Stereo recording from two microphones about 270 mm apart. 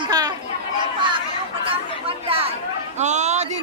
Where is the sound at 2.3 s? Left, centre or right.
Centre.